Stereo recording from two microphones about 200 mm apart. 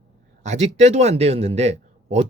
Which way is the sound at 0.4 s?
35° right (ahead or behind).